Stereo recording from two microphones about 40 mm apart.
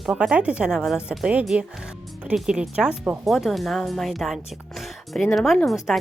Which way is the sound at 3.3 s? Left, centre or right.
Centre.